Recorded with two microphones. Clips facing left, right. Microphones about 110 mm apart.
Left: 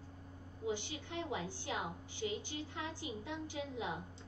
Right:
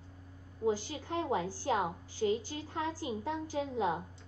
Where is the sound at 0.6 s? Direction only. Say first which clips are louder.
Right 8 dB; 40° right (ahead or behind).